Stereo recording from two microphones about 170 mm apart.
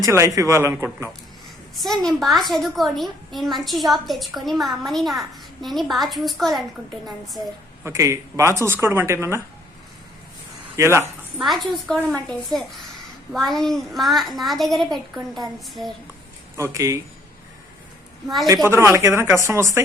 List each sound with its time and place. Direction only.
0.0 s speech: 20° right (ahead or behind)
1.7 s a child's voice: centre (ahead or behind)
7.9 s speech: 15° right (ahead or behind)
10.8 s speech: 15° right (ahead or behind)
11.3 s a child's voice: centre (ahead or behind)
16.6 s speech: 15° right (ahead or behind)
18.4 s speech: 15° right (ahead or behind)